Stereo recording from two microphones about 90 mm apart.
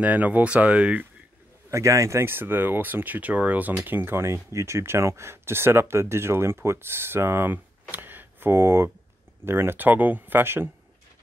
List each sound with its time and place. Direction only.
0.0 s speech: 15° right (ahead or behind)
1.7 s speech: 35° right (ahead or behind)